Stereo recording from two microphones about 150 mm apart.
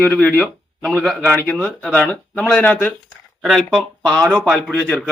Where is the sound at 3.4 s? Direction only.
5° right (ahead or behind).